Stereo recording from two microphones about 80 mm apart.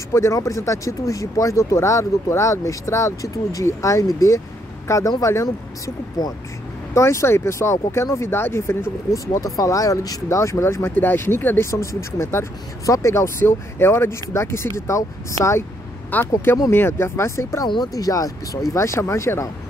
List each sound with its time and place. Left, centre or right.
0.1 s speech: left
6.2 s speech: left
6.9 s speech: left
9.1 s speech: left
16.1 s speech: left
17.9 s speech: left